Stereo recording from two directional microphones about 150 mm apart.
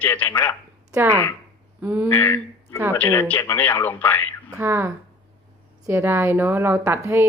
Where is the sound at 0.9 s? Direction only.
15° right (ahead or behind).